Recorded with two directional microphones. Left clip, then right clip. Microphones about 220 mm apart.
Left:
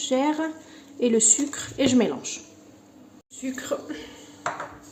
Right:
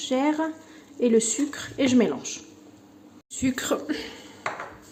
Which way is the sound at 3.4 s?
50° right (ahead or behind).